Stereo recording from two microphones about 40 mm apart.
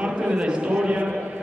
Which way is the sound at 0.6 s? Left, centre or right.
Right.